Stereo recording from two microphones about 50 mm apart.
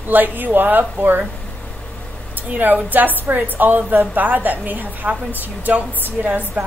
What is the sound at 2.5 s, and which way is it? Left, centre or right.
A woman's voice, right.